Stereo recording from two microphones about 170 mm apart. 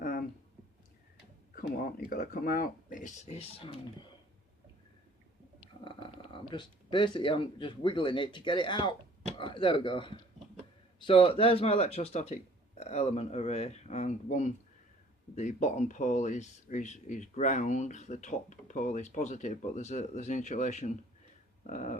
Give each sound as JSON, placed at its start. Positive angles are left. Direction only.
{"t": 0.0, "sound": "a sound", "side_deg": 55}
{"t": 2.0, "sound": "speech", "side_deg": 60}
{"t": 5.8, "sound": "speech", "side_deg": 30}